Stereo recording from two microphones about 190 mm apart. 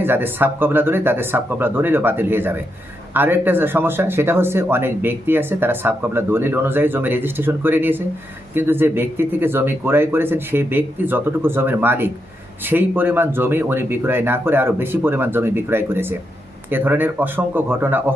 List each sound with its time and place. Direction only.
0.0 s speech: 10° right (ahead or behind)